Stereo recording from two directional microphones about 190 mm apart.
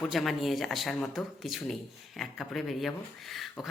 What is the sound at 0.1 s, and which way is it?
Speech, centre (ahead or behind).